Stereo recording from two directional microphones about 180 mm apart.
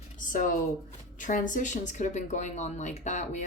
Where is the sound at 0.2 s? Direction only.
50° left (ahead or behind).